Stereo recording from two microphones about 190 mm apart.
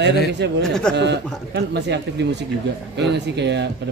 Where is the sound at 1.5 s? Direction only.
65° right (ahead or behind).